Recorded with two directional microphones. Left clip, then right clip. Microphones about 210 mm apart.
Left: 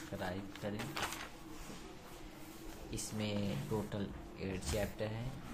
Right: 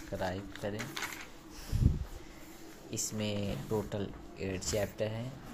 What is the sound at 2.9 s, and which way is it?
Speech, 20° right (ahead or behind).